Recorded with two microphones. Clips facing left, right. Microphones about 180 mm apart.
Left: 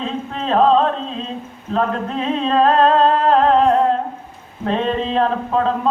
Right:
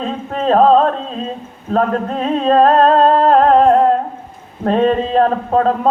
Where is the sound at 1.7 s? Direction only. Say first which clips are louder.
Right 4 dB; 45° right (ahead or behind).